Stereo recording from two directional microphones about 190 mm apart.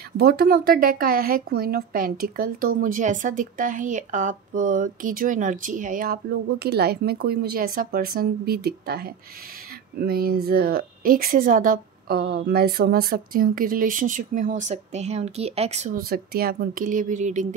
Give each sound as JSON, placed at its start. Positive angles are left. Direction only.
{"t": 0.2, "sound": "a woman's voice", "side_deg": -55}
{"t": 6.6, "sound": "a woman's voice", "side_deg": -60}
{"t": 16.0, "sound": "a woman's voice", "side_deg": -50}